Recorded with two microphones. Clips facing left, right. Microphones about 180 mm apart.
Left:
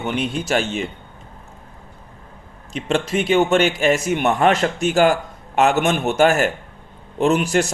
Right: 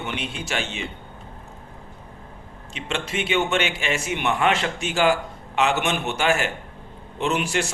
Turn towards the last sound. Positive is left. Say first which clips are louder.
# left 7 dB
turn(degrees=40)  # may be behind; listen again after turning